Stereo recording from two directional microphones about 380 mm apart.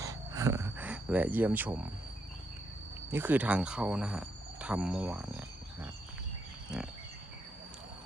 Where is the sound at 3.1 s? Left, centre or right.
Centre.